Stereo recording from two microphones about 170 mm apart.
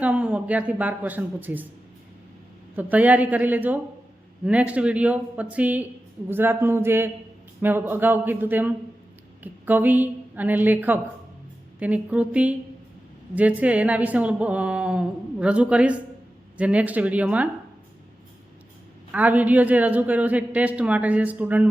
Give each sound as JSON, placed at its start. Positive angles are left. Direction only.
{"t": 0.0, "sound": "speech", "side_deg": -10}
{"t": 2.7, "sound": "speech", "side_deg": -10}
{"t": 19.1, "sound": "speech", "side_deg": -10}